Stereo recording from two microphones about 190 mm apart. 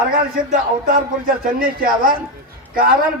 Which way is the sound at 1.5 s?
50° right (ahead or behind).